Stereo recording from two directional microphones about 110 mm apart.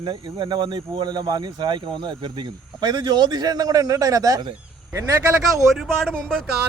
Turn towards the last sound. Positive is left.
turn(degrees=5)  # may be behind; listen again after turning